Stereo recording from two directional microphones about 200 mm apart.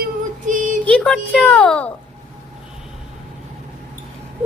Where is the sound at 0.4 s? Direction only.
40° right (ahead or behind).